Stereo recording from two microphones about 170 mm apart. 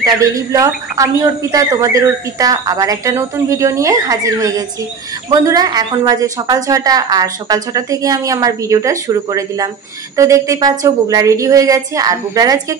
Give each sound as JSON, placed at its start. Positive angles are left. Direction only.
{"t": 0.2, "sound": "speech", "side_deg": -20}